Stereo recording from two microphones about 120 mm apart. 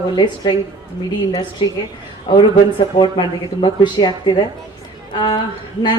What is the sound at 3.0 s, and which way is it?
Speech, 40° left (ahead or behind).